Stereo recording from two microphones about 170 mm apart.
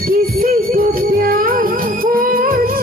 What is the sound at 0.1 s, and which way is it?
Music, 55° right (ahead or behind).